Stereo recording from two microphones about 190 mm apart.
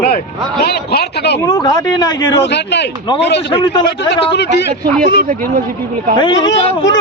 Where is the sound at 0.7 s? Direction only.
60° left (ahead or behind).